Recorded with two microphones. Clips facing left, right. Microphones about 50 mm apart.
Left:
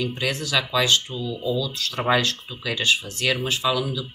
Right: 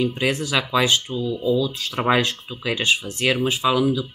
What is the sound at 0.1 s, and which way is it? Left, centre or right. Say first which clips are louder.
Speech: right 3 dB; centre.